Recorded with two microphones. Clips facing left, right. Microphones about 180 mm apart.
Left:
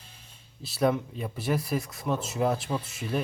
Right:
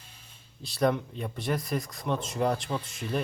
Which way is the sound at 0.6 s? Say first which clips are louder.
Left 1 dB; 5° left (ahead or behind).